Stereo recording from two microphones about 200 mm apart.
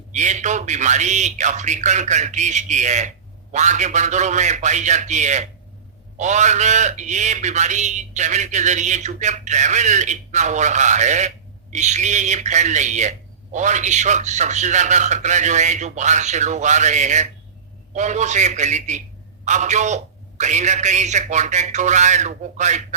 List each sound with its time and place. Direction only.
0.1 s a man's voice: 35° right (ahead or behind)